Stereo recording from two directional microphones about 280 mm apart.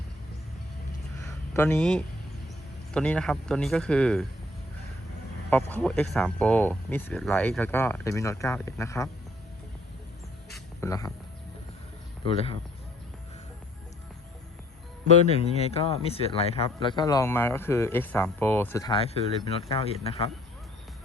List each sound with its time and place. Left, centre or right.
1.5 s a man's voice: centre
5.5 s speech: centre
10.5 s music: centre
12.2 s speech: centre
15.0 s speech: left